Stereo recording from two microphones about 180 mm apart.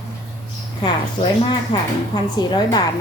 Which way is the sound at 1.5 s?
20° left (ahead or behind).